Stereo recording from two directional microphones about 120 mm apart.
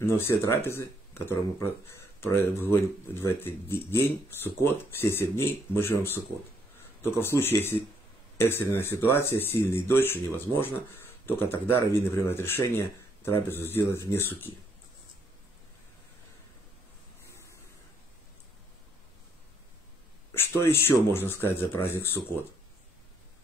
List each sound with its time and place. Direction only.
0.0 s speech: 20° left (ahead or behind)
17.3 s a sound: 25° left (ahead or behind)
20.3 s speech: 20° left (ahead or behind)